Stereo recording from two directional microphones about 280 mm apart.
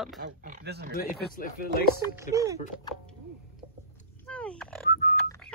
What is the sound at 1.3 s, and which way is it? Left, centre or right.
Speech, left.